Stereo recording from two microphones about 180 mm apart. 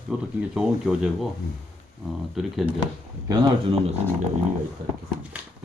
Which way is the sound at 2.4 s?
Centre (ahead or behind).